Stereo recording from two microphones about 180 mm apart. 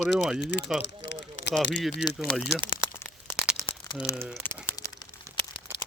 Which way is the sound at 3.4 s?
Centre (ahead or behind).